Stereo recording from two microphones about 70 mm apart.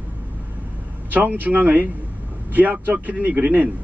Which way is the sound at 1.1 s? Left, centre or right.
Right.